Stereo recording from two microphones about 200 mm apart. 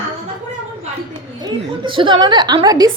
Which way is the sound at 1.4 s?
20° right (ahead or behind).